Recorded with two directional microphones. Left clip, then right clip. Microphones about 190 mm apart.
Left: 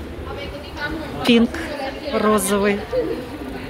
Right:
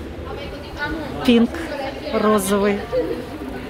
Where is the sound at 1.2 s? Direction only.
5° right (ahead or behind).